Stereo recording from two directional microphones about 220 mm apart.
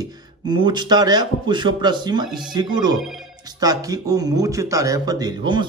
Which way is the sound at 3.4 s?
15° right (ahead or behind).